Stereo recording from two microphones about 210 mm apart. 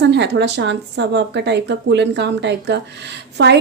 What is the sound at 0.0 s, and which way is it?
A woman's voice, 55° right (ahead or behind).